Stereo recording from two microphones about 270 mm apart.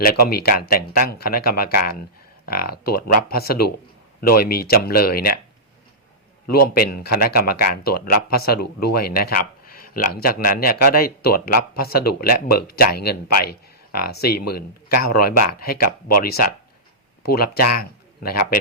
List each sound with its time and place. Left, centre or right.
0.3 s speech: left
6.7 s speech: left
9.7 s a sound: left
10.2 s speech: left